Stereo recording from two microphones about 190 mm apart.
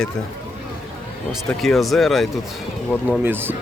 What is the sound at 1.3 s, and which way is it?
Speech, centre (ahead or behind).